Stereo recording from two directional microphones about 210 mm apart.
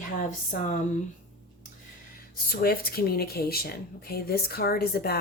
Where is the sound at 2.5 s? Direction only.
45° left (ahead or behind).